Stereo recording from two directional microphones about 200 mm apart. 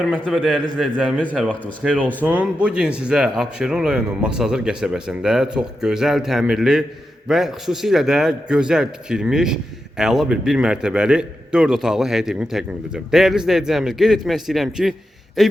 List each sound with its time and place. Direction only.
0.0 s a man's voice: centre (ahead or behind)